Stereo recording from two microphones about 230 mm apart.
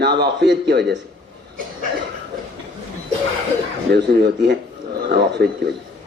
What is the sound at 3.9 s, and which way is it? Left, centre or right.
A man's voice, right.